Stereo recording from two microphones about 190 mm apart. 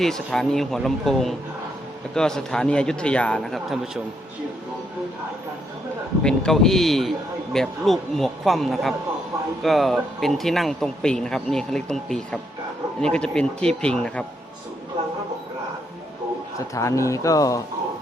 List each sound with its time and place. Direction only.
0.0 s speech: centre (ahead or behind)
6.2 s speech: 5° left (ahead or behind)
16.6 s speech: 15° left (ahead or behind)